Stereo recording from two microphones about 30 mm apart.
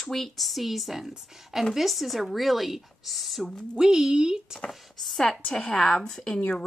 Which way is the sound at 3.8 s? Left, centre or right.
Right.